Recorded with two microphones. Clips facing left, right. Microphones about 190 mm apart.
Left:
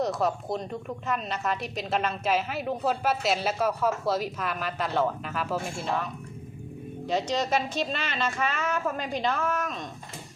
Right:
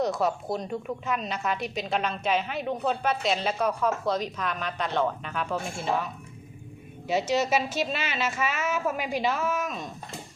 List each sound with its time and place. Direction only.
0.0 s a woman's voice: centre (ahead or behind)
7.1 s a woman's voice: 5° right (ahead or behind)